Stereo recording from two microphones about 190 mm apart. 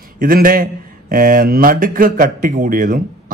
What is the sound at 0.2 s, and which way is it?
Speech, 50° right (ahead or behind).